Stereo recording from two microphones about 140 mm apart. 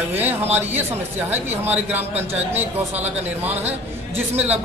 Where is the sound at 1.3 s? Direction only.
15° right (ahead or behind).